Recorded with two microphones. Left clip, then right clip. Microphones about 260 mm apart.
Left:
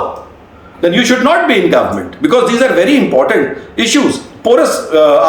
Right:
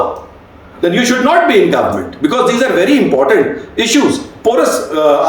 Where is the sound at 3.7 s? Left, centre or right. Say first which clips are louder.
Left 1 dB; centre.